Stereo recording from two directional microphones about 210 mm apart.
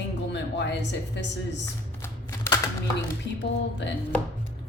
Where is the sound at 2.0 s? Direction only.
15° left (ahead or behind).